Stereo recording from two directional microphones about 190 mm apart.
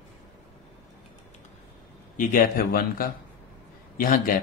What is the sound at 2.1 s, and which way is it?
Speech, 45° left (ahead or behind).